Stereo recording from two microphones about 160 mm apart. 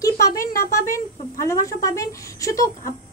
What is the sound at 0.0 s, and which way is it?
A woman's voice, 20° left (ahead or behind).